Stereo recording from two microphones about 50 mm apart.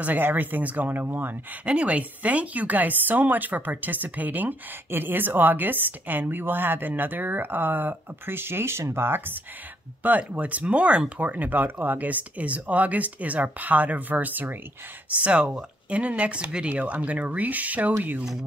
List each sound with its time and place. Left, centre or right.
0.0 s speech: right
1.0 s speech: right
1.7 s speech: right
10.0 s speech: right
11.2 s speech: right